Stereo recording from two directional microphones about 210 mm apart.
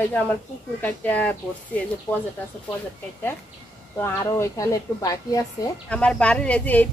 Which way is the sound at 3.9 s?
10° left (ahead or behind).